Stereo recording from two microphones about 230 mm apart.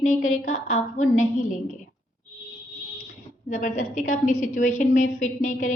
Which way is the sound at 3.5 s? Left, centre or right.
Left.